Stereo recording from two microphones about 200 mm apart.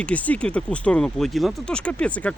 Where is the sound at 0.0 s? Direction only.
5° left (ahead or behind).